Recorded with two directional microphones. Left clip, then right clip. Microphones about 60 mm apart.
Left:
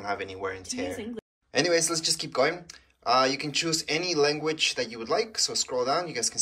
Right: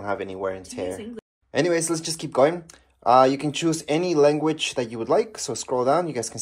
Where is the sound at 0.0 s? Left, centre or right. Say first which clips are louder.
Right 4 dB; right.